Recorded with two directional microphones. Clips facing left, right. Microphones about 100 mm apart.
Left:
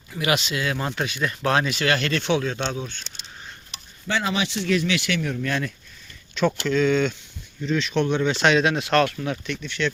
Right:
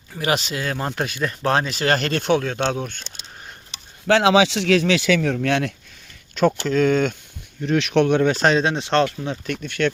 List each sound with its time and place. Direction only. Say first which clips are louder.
0.1 s speech: right 1 dB; 35° right (ahead or behind); by 3.0 s 55° right (ahead or behind)
4.0 s speech: right 10 dB; 85° right
6.3 s speech: right 3 dB; 40° right (ahead or behind)
7.6 s speech: right 5 dB; 65° right (ahead or behind); by 9.0 s 30° right (ahead or behind)
9.5 s speech: right 8 dB; 50° right (ahead or behind)